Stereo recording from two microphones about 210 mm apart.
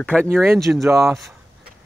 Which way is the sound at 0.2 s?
Centre (ahead or behind).